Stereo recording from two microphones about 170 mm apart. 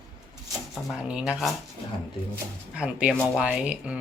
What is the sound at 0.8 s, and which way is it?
Speech, 5° right (ahead or behind).